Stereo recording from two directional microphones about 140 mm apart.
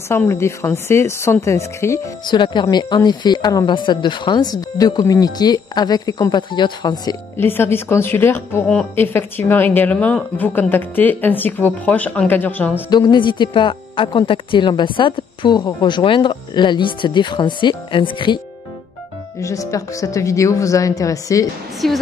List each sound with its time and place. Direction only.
0.3 s speech: 20° left (ahead or behind)
2.3 s speech: 35° left (ahead or behind)
7.3 s a woman's voice: 15° left (ahead or behind)
12.9 s speech: 30° left (ahead or behind)
19.4 s speech: 25° left (ahead or behind)
21.8 s speech: centre (ahead or behind)